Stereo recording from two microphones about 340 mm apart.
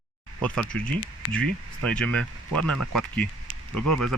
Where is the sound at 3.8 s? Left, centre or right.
Right.